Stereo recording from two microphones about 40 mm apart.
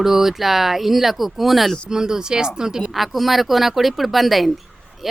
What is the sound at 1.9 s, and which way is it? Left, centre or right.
Speech, centre.